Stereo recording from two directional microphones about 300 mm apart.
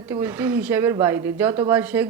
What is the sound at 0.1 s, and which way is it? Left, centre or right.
Speech, centre.